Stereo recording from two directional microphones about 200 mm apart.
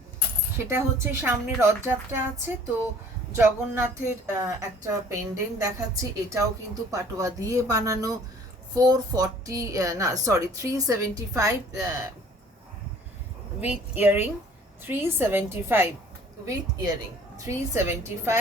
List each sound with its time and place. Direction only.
0.6 s a woman's voice: 10° right (ahead or behind)
3.3 s a woman's voice: 10° right (ahead or behind)
6.9 s a woman's voice: 15° right (ahead or behind)
13.6 s a woman's voice: 10° right (ahead or behind)